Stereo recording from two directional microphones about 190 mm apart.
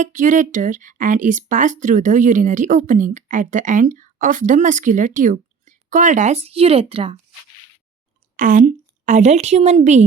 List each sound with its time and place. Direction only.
0.0 s speech: 45° right (ahead or behind)
8.4 s a woman's voice: 45° right (ahead or behind)